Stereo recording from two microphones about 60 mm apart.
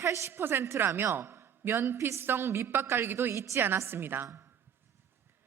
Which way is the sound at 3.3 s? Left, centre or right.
Right.